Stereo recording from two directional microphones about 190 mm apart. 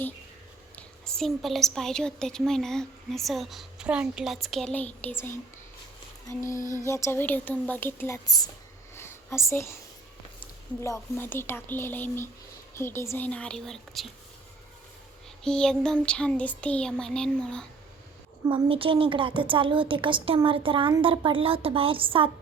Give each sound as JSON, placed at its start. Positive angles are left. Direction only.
{"t": 0.8, "sound": "a woman's voice", "side_deg": 5}
{"t": 9.0, "sound": "a sound", "side_deg": 15}
{"t": 10.8, "sound": "speech", "side_deg": 15}
{"t": 15.4, "sound": "a woman's voice", "side_deg": 5}
{"t": 18.4, "sound": "a woman's voice", "side_deg": -30}